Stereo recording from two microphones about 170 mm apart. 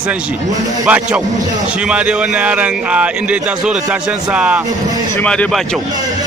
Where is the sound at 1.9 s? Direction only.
10° right (ahead or behind).